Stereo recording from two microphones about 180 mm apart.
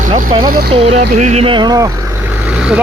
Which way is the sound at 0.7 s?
30° right (ahead or behind).